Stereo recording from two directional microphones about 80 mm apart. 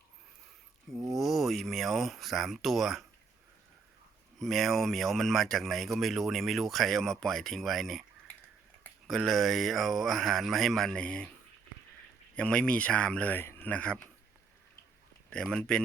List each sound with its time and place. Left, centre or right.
1.1 s speech: centre
4.4 s speech: centre
9.0 s speech: centre
12.4 s speech: centre
13.3 s speech: left
15.3 s speech: centre